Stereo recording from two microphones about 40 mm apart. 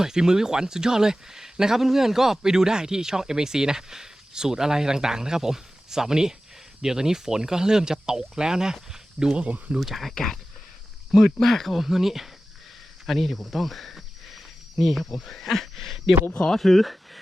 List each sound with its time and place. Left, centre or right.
0.0 s speech: centre
9.8 s speech: centre
10.2 s speech: centre
11.8 s speech: centre